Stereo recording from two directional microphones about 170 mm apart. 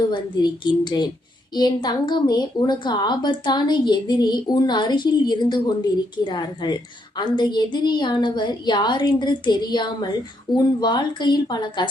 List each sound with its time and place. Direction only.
0.1 s a woman's voice: 25° left (ahead or behind)